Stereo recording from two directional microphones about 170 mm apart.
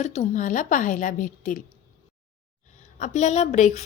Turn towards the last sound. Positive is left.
turn(degrees=45)  # may be behind; listen again after turning